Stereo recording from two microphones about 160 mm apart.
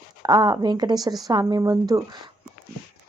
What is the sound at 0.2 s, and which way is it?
Speech, 25° right (ahead or behind).